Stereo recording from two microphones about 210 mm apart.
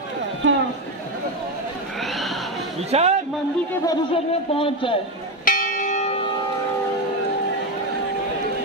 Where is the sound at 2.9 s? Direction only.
30° right (ahead or behind).